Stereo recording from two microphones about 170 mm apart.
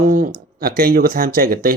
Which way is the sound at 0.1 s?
55° right (ahead or behind).